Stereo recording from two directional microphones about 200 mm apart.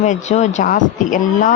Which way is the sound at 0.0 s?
35° left (ahead or behind).